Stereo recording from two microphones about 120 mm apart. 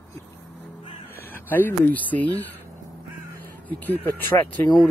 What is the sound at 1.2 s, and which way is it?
Speech, 15° left (ahead or behind).